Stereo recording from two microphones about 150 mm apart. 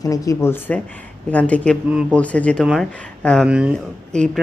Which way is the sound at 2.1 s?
10° left (ahead or behind).